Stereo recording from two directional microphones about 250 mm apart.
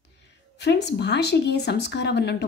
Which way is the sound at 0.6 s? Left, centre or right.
Left.